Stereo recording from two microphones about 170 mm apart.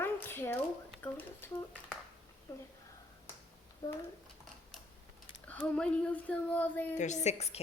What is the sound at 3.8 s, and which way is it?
Speech, 25° left (ahead or behind).